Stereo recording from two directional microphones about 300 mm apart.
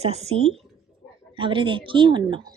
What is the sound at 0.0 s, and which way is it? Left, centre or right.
Speech, centre.